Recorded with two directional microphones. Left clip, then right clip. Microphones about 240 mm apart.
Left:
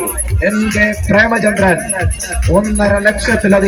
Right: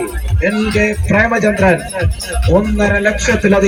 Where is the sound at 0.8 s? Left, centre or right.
Right.